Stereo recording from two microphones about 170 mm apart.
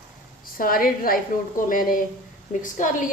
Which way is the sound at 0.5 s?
55° left (ahead or behind).